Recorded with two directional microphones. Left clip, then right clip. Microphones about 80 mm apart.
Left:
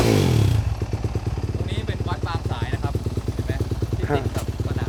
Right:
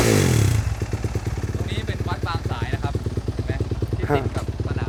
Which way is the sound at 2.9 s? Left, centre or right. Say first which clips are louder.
Even; right.